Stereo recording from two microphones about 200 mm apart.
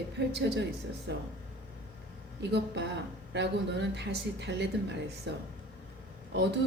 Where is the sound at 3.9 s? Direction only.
60° right (ahead or behind).